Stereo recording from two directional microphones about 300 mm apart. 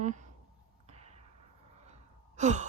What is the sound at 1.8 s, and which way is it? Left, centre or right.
Gasp, right.